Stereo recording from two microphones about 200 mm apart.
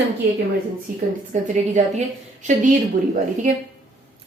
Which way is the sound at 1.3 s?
40° right (ahead or behind).